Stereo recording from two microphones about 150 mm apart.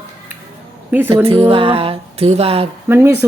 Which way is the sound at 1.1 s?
40° right (ahead or behind).